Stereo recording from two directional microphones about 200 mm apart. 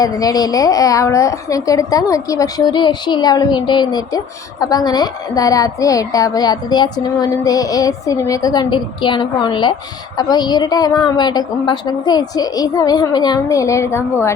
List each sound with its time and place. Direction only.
0.0 s a woman's voice: 20° left (ahead or behind)